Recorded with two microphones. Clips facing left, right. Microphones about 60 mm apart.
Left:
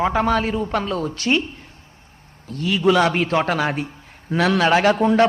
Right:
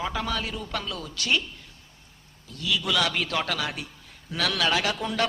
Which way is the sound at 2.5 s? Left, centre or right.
Left.